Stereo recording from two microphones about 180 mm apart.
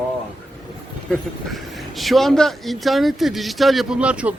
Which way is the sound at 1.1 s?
Centre (ahead or behind).